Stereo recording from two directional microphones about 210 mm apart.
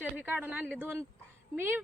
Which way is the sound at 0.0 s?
5° right (ahead or behind).